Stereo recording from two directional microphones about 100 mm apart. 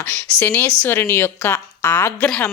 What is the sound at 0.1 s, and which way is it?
Speech, 15° left (ahead or behind).